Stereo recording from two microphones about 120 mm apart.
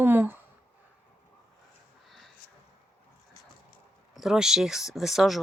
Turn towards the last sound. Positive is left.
turn(degrees=0)  # may be behind; listen again after turning